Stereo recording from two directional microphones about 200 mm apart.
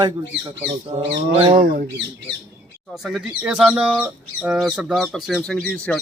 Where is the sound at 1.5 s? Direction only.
45° right (ahead or behind).